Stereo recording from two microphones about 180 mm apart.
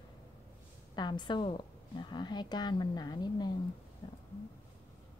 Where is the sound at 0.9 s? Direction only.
25° left (ahead or behind).